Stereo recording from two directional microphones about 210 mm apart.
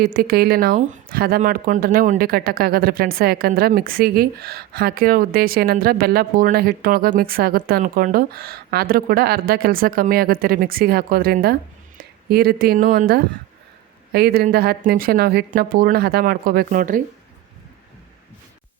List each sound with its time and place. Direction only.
0.0 s speech: 45° right (ahead or behind)